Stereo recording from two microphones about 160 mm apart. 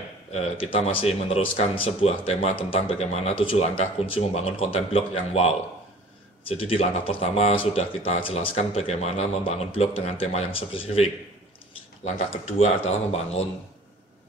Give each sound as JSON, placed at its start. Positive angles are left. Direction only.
{"t": 0.3, "sound": "speech", "side_deg": 40}
{"t": 6.6, "sound": "speech", "side_deg": 35}